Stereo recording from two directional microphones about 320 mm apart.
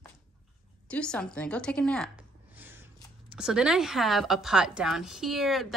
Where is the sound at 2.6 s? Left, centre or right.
Centre.